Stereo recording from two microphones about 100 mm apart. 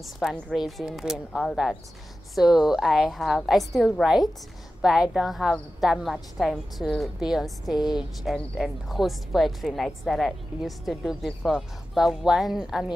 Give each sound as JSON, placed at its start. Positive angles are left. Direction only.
{"t": 0.0, "sound": "a woman's voice", "side_deg": 0}
{"t": 7.7, "sound": "speech", "side_deg": 45}
{"t": 8.2, "sound": "a woman's voice", "side_deg": 0}